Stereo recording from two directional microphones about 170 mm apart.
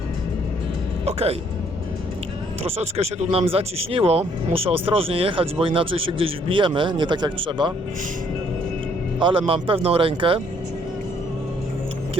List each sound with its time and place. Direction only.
1.0 s speech: 35° right (ahead or behind)
2.6 s speech: 40° right (ahead or behind)
9.1 s speech: 30° right (ahead or behind)